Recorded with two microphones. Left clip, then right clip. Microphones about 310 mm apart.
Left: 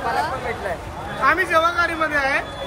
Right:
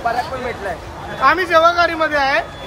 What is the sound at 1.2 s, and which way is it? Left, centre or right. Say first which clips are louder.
Speech: right 5 dB; centre.